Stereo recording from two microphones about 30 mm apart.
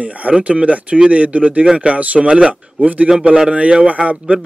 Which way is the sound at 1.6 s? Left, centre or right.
Right.